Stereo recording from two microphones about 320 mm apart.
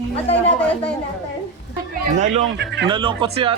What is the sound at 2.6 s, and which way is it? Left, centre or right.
Speech, right.